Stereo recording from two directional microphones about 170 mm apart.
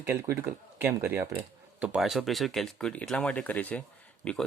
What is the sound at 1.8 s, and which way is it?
Speech, 5° right (ahead or behind).